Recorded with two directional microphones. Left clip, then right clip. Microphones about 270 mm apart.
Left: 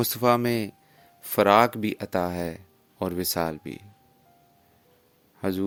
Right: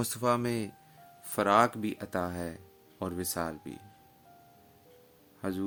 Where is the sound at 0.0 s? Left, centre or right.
Left.